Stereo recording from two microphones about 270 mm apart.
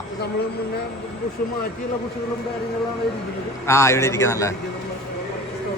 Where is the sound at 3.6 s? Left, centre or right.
Centre.